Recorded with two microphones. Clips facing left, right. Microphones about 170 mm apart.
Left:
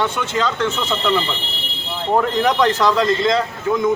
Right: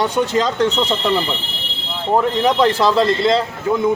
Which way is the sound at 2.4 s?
30° right (ahead or behind).